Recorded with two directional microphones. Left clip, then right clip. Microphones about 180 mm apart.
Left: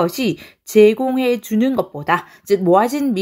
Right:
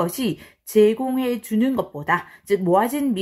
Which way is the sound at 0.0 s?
25° left (ahead or behind).